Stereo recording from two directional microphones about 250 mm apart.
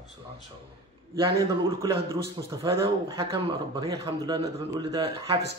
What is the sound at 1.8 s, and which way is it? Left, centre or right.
A man's voice, centre.